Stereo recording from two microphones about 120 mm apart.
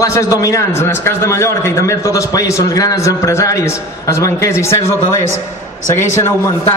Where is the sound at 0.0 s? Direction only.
25° left (ahead or behind).